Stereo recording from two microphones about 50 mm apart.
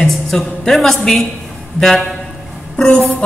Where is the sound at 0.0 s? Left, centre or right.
Centre.